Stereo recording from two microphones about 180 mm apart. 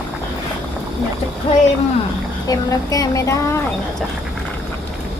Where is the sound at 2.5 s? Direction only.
20° left (ahead or behind).